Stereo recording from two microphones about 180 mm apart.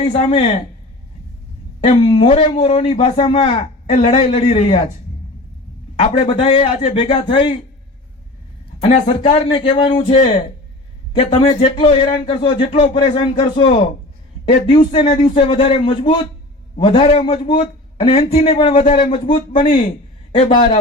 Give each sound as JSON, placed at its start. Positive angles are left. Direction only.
{"t": 0.0, "sound": "a man's voice", "side_deg": 35}
{"t": 1.8, "sound": "a man's voice", "side_deg": 30}
{"t": 6.0, "sound": "a man's voice", "side_deg": 30}
{"t": 8.8, "sound": "speech", "side_deg": 35}
{"t": 11.2, "sound": "a man's voice", "side_deg": 35}
{"t": 18.8, "sound": "a man's voice", "side_deg": 45}